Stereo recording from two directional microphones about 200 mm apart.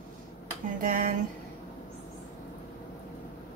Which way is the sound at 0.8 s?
45° right (ahead or behind).